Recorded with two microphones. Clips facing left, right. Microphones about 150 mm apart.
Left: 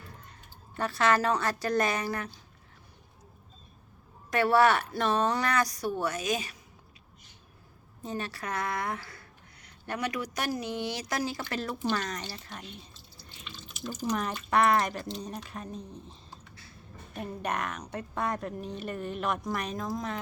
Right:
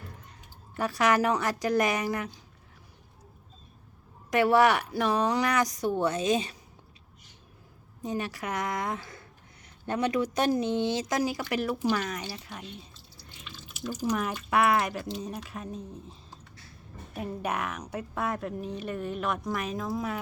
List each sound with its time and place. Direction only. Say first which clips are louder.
0.8 s speech: right 1 dB; 15° right (ahead or behind)
4.3 s speech: right 1 dB; 15° right (ahead or behind)
8.0 s a man's voice: right 3 dB; 15° right (ahead or behind)
17.4 s a woman's voice: even; 5° right (ahead or behind)